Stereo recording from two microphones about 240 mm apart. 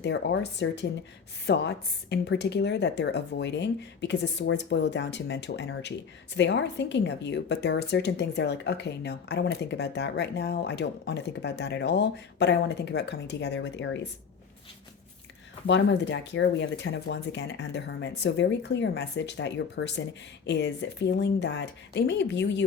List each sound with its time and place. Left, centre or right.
0.0 s a woman's voice: left
15.6 s a woman's voice: left